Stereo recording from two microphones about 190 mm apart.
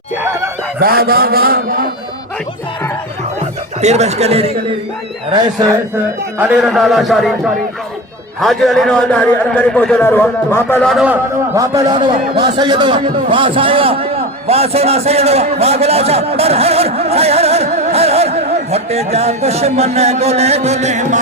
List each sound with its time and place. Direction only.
0.8 s a man's voice: 50° right (ahead or behind)
3.8 s a man's voice: 35° right (ahead or behind)
5.3 s a man's voice: 20° right (ahead or behind)
6.4 s a man's voice: 10° right (ahead or behind)
8.4 s a man's voice: centre (ahead or behind)
11.5 s a man's voice: 15° right (ahead or behind); by 21.2 s 40° right (ahead or behind)